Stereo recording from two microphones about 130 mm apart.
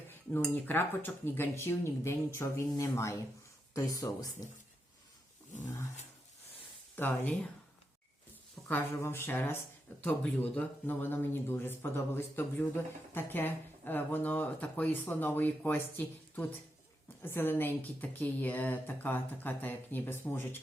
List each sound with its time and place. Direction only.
0.1 s speech: 15° left (ahead or behind)
6.9 s speech: 15° left (ahead or behind)
8.6 s speech: 15° left (ahead or behind)